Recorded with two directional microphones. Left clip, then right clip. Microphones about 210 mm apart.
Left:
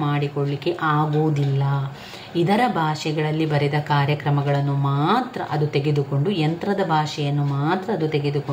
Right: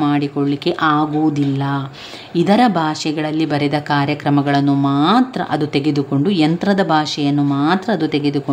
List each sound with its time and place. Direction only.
0.7 s speech: 40° right (ahead or behind)
2.4 s a woman's voice: 45° right (ahead or behind)